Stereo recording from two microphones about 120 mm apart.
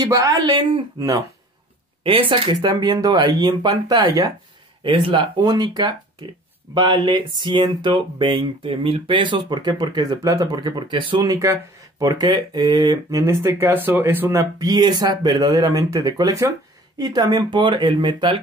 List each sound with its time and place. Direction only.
0.1 s speech: 30° right (ahead or behind)
0.6 s speech: 45° right (ahead or behind)
0.9 s speech: 30° right (ahead or behind)
2.0 s speech: 45° right (ahead or behind)
2.7 s speech: 35° right (ahead or behind)
4.8 s speech: 45° right (ahead or behind)
11.2 s speech: 25° right (ahead or behind)
13.2 s speech: 25° right (ahead or behind); by 18.4 s 40° right (ahead or behind)